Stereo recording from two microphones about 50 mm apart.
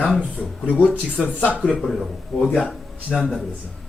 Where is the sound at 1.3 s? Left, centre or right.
Left.